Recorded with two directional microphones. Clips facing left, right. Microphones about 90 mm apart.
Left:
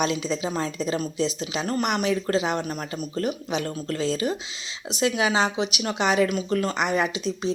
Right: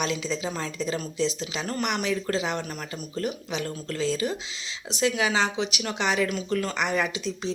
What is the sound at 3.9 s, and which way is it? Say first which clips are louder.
A woman's voice: left 1 dB; 20° left (ahead or behind).